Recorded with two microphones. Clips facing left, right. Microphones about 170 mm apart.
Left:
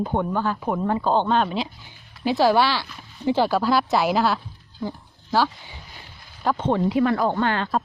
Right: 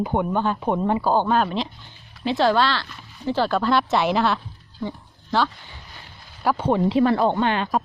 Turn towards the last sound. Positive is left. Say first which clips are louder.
# right 1 dB
turn(degrees=-15)  # may be behind; listen again after turning